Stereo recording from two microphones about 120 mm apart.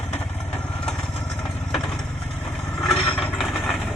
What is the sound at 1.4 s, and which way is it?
Engine, 5° left (ahead or behind).